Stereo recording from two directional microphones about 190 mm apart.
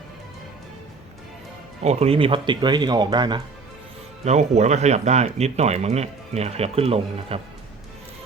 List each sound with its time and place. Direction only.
1.8 s speech: 35° right (ahead or behind)
4.3 s speech: 35° right (ahead or behind)